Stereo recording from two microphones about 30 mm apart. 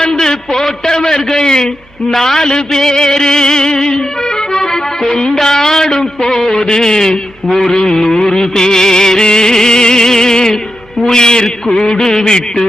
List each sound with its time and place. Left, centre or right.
0.2 s a sound: centre
2.0 s a man's voice: centre
2.5 s music: left